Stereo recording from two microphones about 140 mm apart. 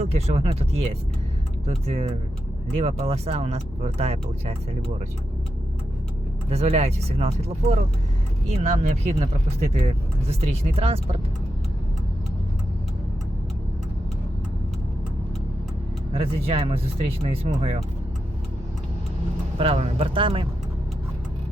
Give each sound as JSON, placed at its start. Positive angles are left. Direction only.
{"t": 0.0, "sound": "speech", "side_deg": -45}
{"t": 6.5, "sound": "speech", "side_deg": -50}
{"t": 16.1, "sound": "speech", "side_deg": -45}
{"t": 19.5, "sound": "speech", "side_deg": -45}